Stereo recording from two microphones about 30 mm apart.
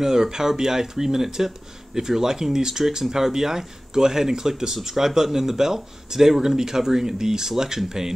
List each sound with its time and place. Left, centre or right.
0.0 s speech: centre